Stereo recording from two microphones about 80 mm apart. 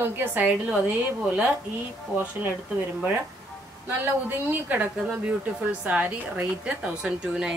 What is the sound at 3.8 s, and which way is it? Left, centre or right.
A woman's voice, right.